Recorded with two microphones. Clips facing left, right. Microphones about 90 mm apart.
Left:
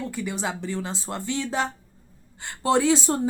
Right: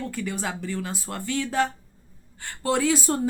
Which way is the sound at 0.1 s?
20° left (ahead or behind).